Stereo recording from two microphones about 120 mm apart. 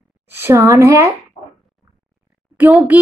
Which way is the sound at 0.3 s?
20° right (ahead or behind).